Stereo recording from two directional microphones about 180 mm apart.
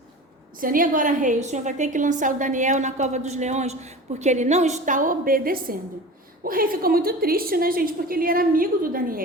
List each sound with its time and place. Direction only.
0.6 s a woman's voice: 50° right (ahead or behind)